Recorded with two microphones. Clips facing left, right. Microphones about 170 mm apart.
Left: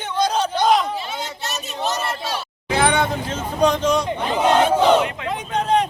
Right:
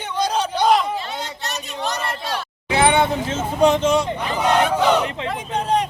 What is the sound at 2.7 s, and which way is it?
Vehicle, 25° right (ahead or behind).